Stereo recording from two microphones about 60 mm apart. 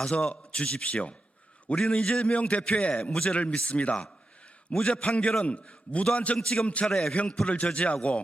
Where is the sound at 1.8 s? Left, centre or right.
Centre.